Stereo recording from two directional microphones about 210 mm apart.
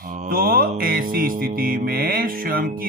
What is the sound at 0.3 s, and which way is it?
Music, 45° right (ahead or behind).